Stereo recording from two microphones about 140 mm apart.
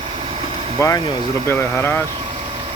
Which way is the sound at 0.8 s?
20° left (ahead or behind).